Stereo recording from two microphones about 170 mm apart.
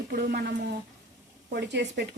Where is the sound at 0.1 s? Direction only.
65° right (ahead or behind).